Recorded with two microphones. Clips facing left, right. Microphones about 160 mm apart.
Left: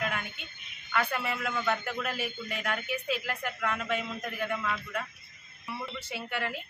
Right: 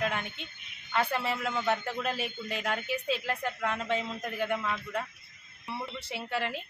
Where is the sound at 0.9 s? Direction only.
25° right (ahead or behind).